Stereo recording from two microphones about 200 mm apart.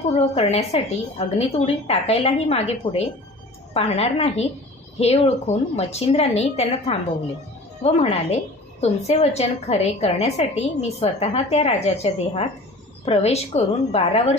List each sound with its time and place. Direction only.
0.3 s a woman's voice: 30° left (ahead or behind)